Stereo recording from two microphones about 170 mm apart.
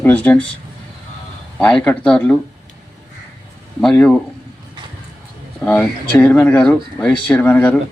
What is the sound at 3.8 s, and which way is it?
Speech, 5° left (ahead or behind).